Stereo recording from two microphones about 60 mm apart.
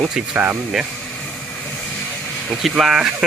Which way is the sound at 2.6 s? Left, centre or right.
Centre.